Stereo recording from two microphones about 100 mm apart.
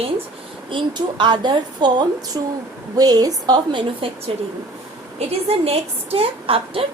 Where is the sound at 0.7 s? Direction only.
50° right (ahead or behind).